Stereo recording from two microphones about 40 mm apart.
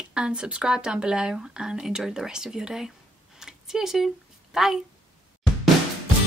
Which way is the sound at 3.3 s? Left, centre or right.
Centre.